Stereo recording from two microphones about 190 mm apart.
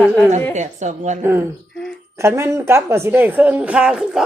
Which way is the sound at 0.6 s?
40° right (ahead or behind).